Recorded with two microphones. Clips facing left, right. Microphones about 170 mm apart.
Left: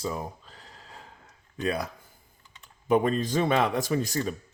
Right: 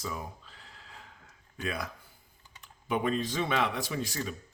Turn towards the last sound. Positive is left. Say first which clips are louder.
# left 7 dB
turn(degrees=45)  # may be behind; listen again after turning